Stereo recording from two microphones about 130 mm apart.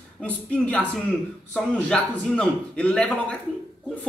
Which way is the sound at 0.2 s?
10° left (ahead or behind).